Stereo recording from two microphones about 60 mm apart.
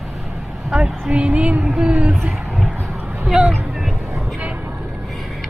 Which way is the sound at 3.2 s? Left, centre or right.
Centre.